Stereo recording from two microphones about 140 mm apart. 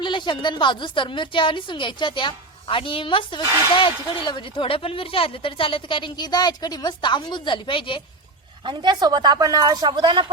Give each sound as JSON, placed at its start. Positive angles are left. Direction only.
{"t": 0.0, "sound": "speech", "side_deg": 35}
{"t": 8.6, "sound": "a woman's voice", "side_deg": -35}